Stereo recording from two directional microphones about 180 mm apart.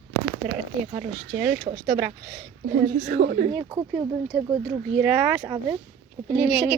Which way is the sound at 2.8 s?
40° right (ahead or behind).